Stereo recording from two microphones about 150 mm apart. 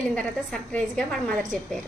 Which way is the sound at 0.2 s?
5° left (ahead or behind).